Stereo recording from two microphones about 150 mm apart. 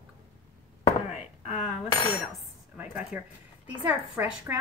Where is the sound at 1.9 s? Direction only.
30° left (ahead or behind).